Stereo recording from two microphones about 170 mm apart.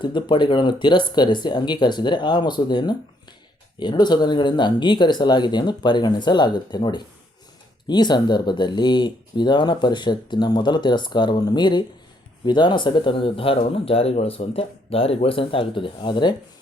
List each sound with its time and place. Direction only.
0.0 s speech: 25° left (ahead or behind)